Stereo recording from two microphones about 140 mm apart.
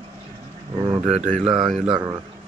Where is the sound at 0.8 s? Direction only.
30° right (ahead or behind).